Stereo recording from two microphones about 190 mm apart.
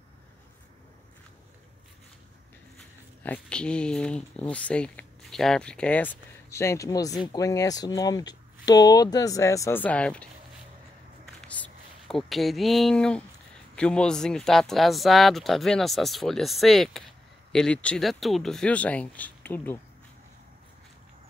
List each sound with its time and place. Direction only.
3.3 s speech: 5° left (ahead or behind)
11.4 s a sound: 5° left (ahead or behind)
13.7 s speech: 5° left (ahead or behind)